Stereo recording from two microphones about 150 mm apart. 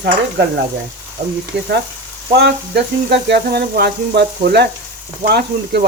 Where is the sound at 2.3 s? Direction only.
90° right.